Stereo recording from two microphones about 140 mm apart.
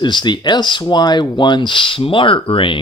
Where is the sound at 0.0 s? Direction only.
35° left (ahead or behind).